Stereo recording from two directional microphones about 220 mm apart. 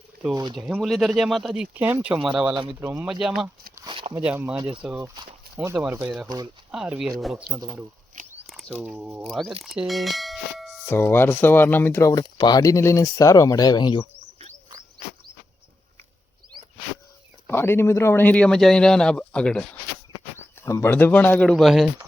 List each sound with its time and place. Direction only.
0.5 s speech: centre (ahead or behind)
3.8 s a sound: 20° right (ahead or behind)
4.1 s speech: 10° right (ahead or behind)
6.2 s speech: 15° right (ahead or behind)
6.7 s speech: 5° right (ahead or behind)
7.5 s speech: 10° right (ahead or behind)
8.4 s a sound: centre (ahead or behind)
8.8 s speech: centre (ahead or behind)
9.6 s a sound: centre (ahead or behind)
10.8 s speech: 10° left (ahead or behind)
17.4 s speech: 10° left (ahead or behind)